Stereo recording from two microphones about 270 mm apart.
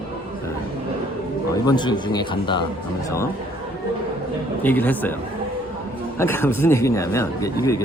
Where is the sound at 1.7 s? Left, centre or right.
Centre.